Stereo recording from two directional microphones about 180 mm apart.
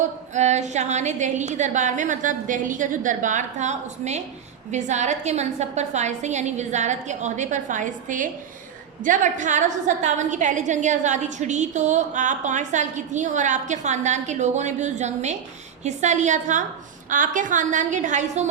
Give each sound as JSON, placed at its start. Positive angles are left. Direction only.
{"t": 0.3, "sound": "a woman's voice", "side_deg": -40}